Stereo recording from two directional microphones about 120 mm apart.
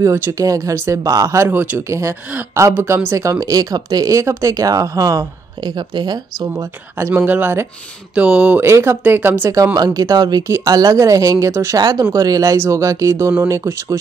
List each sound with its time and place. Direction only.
0.0 s speech: 25° right (ahead or behind)
6.6 s speech: 20° right (ahead or behind)